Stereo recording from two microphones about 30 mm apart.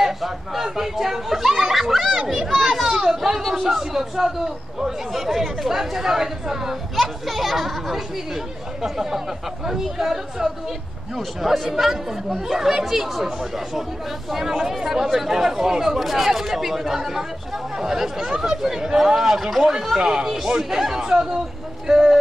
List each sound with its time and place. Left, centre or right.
0.0 s speech: centre
2.6 s chatter: centre
3.6 s speech: centre
7.0 s speech: centre
14.3 s speech: centre
16.0 s speech: centre
20.2 s speech: centre